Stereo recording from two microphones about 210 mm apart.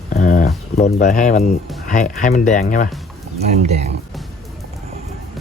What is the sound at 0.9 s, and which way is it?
Speech, 40° left (ahead or behind).